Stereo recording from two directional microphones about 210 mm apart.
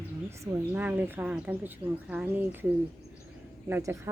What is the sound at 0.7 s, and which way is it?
A woman's voice, 10° right (ahead or behind).